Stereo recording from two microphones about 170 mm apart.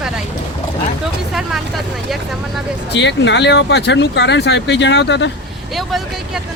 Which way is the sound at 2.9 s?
90° left.